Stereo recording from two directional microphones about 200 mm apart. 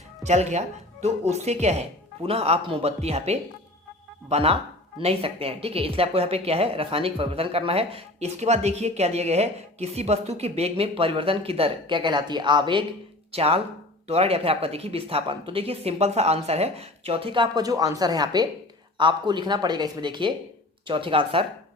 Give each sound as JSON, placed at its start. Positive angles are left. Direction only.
{"t": 0.3, "sound": "speech", "side_deg": -35}